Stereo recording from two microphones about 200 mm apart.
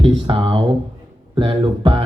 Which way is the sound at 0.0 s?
25° right (ahead or behind).